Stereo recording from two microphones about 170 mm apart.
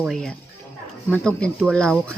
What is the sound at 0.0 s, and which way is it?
Speech, centre (ahead or behind).